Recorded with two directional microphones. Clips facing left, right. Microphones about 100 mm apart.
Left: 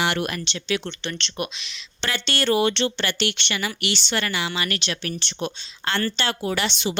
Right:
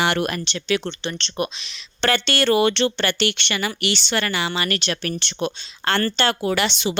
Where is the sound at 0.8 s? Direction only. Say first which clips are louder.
Right 3 dB; 35° right (ahead or behind).